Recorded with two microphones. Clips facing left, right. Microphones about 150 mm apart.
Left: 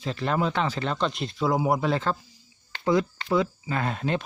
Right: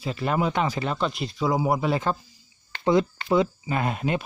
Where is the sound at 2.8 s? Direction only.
20° right (ahead or behind).